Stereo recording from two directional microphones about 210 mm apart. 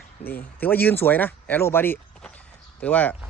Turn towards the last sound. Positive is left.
turn(degrees=5)  # may be behind; listen again after turning